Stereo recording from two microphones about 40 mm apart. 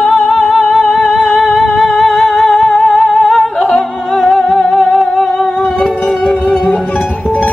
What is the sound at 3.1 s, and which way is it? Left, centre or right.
Humming, centre.